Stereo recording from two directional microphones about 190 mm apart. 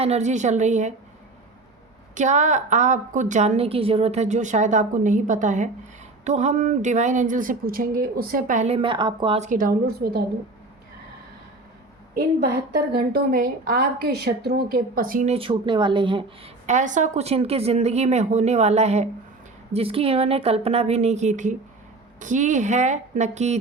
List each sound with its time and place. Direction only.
0.0 s a woman's voice: 35° right (ahead or behind)
2.1 s a woman's voice: 40° right (ahead or behind)
9.5 s a woman's voice: 50° right (ahead or behind)
12.9 s a woman's voice: 50° right (ahead or behind)
15.3 s speech: 30° right (ahead or behind)
16.6 s a woman's voice: 40° right (ahead or behind)